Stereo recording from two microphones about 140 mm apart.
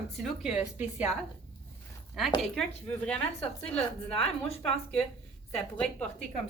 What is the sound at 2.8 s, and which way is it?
A woman's voice, 10° left (ahead or behind).